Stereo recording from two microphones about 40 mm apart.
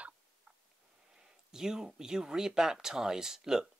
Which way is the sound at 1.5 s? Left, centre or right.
Centre.